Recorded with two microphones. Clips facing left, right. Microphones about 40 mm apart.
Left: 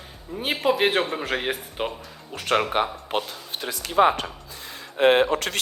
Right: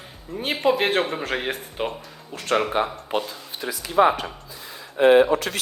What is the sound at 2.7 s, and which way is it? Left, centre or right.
Speech, left.